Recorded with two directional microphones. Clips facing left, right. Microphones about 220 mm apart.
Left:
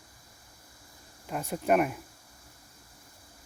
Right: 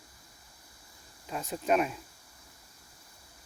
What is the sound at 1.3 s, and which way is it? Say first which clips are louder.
Speech: left 2 dB; 10° left (ahead or behind).